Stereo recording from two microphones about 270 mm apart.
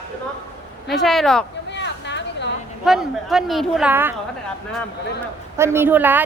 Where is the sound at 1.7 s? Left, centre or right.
Left.